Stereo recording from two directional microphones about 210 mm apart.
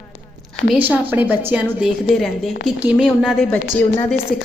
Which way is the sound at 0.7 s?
10° right (ahead or behind).